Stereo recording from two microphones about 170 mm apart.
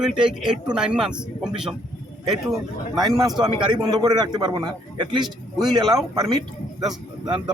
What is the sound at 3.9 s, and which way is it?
A man's voice, 25° right (ahead or behind).